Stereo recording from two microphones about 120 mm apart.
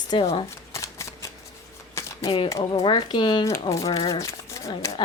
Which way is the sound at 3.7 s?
25° left (ahead or behind).